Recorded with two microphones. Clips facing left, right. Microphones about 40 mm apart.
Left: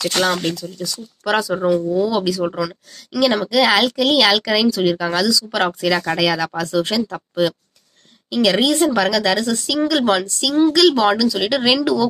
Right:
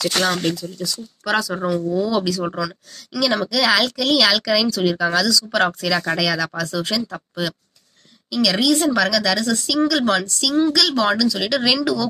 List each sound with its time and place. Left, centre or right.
0.2 s speech: centre; by 7.0 s left
7.0 s speech: centre
8.3 s speech: left
8.7 s speech: centre